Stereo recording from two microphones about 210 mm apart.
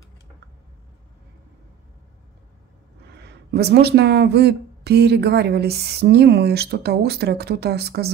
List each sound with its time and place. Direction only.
3.1 s speech: 50° right (ahead or behind)